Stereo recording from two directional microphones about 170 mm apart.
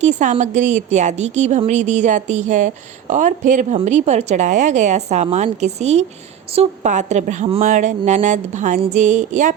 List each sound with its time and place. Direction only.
0.0 s a woman's voice: 45° right (ahead or behind)